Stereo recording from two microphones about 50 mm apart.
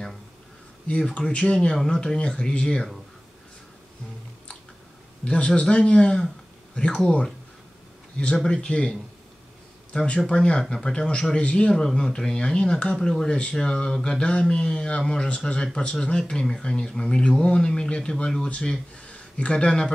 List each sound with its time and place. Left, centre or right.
1.1 s speech: left
5.2 s a man's voice: left
8.5 s speech: centre
9.9 s speech: left